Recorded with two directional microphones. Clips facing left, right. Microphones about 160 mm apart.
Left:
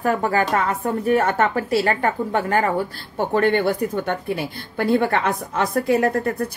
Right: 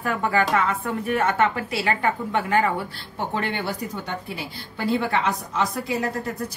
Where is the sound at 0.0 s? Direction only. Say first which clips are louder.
Left 3 dB; 40° left (ahead or behind).